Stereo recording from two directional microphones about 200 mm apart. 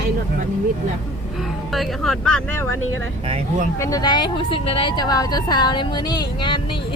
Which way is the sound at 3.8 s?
20° left (ahead or behind).